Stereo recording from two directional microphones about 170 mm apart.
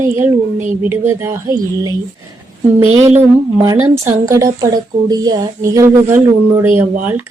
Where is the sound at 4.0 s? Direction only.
20° right (ahead or behind).